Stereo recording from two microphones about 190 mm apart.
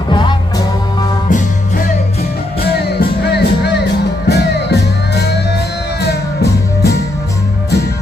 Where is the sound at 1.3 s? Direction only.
40° left (ahead or behind).